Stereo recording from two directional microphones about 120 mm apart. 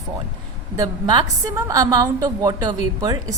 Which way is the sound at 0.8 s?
30° right (ahead or behind).